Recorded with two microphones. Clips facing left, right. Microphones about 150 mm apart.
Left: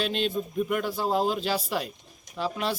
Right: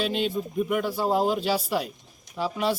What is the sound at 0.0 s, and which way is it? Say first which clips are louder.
Speech: right 1 dB; 10° right (ahead or behind).